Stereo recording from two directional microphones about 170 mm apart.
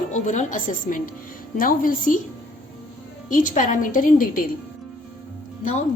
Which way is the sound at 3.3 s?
50° left (ahead or behind).